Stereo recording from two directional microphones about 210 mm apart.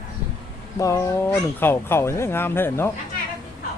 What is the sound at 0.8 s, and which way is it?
Speech, 15° left (ahead or behind).